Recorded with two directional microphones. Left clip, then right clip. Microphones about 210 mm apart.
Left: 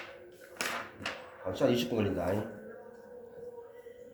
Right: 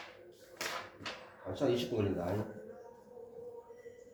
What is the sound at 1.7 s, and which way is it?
Speech, 50° left (ahead or behind).